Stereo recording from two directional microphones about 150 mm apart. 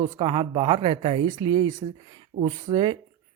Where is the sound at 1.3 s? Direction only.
25° right (ahead or behind).